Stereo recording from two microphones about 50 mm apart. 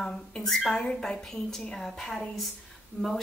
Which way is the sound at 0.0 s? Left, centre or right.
Centre.